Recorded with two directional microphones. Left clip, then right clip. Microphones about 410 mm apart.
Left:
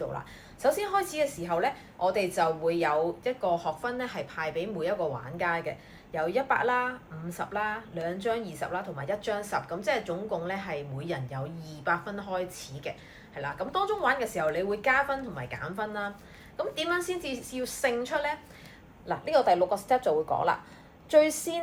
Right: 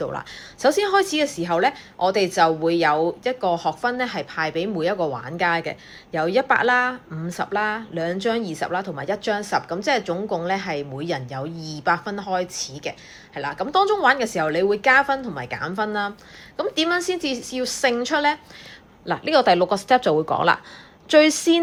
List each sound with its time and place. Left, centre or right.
0.6 s a woman's voice: centre